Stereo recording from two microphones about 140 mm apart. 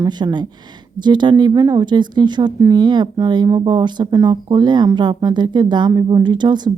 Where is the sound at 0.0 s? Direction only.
30° right (ahead or behind).